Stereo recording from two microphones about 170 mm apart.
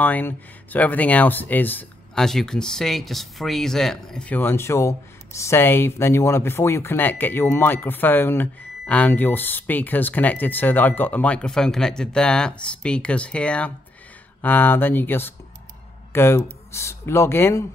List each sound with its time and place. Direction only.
0.0 s speech: 10° left (ahead or behind)